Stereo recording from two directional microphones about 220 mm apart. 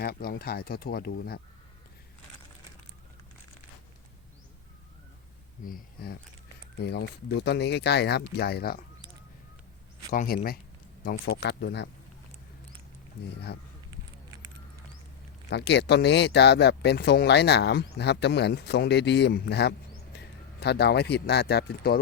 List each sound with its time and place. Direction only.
0.0 s speech: 45° left (ahead or behind)
5.6 s speech: 40° left (ahead or behind)
10.1 s speech: 40° left (ahead or behind)
15.4 s speech: 50° left (ahead or behind)